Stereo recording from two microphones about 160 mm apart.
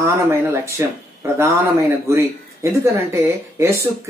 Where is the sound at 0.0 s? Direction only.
15° right (ahead or behind).